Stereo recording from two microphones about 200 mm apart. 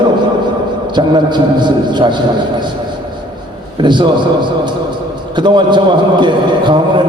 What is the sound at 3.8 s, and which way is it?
A man's voice, 20° right (ahead or behind).